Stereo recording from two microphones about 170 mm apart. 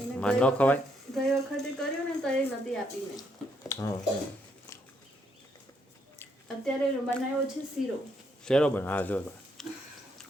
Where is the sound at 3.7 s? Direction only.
20° left (ahead or behind).